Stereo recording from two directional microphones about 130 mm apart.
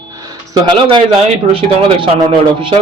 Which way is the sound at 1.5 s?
45° right (ahead or behind).